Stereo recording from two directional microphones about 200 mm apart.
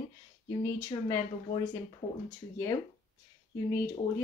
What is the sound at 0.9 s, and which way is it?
Speech, 20° left (ahead or behind).